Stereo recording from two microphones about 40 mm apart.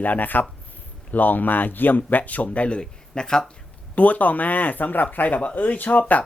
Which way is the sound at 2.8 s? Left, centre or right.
Centre.